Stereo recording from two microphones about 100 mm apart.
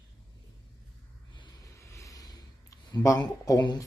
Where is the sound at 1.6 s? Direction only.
30° left (ahead or behind).